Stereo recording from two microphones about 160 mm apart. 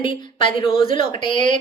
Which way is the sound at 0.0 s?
30° left (ahead or behind).